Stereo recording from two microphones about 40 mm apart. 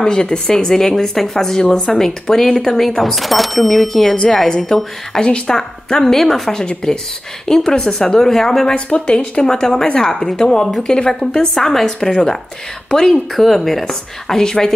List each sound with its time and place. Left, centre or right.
0.0 s a woman's voice: centre
3.0 s speech: centre
3.9 s a woman's voice: centre
6.6 s a woman's voice: left
8.7 s a woman's voice: left
11.5 s a woman's voice: centre
13.4 s a woman's voice: centre